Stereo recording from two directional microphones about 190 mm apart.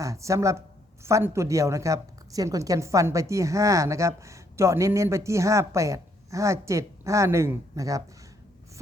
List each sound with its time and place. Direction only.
0.0 s a woman's voice: 15° right (ahead or behind)